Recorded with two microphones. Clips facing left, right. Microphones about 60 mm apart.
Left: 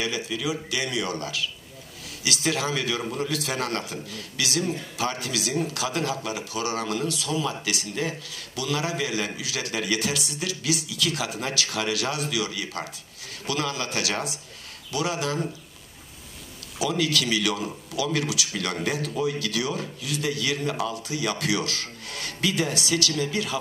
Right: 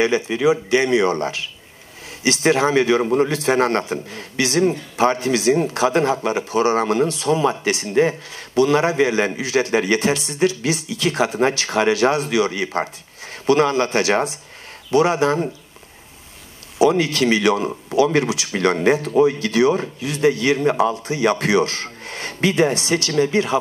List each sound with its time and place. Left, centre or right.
0.0 s a man's voice: right
16.7 s a man's voice: right